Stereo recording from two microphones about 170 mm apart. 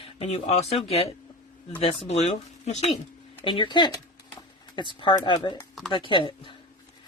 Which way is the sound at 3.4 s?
30° left (ahead or behind).